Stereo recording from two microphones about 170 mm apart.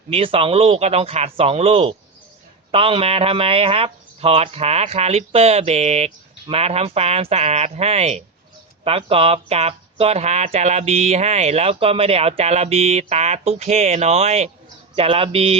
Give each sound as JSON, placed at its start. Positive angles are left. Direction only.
{"t": 0.1, "sound": "speech", "side_deg": -35}